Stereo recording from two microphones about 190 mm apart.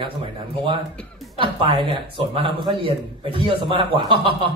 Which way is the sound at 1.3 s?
25° right (ahead or behind).